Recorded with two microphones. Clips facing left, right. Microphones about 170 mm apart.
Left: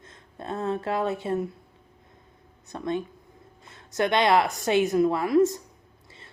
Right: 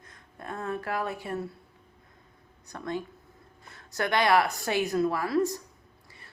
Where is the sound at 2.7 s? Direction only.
20° left (ahead or behind).